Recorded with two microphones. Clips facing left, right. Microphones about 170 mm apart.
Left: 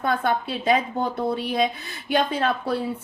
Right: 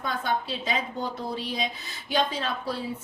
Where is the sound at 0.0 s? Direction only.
55° left (ahead or behind).